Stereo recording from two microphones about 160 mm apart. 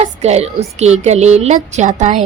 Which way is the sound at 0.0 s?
45° right (ahead or behind).